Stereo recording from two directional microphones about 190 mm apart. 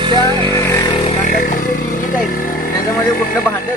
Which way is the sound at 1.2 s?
45° left (ahead or behind).